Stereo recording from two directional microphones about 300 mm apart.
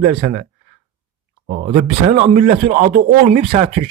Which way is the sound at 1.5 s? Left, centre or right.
Right.